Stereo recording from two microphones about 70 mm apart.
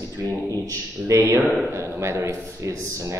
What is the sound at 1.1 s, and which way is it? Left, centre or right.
A man's voice, right.